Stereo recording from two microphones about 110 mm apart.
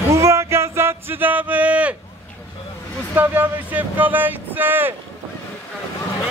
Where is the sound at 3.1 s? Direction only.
15° right (ahead or behind).